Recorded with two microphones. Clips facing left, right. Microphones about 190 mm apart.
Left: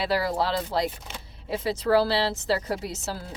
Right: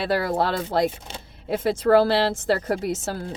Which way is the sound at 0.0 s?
50° right (ahead or behind).